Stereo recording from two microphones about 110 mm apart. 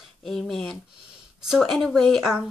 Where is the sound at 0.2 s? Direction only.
5° left (ahead or behind).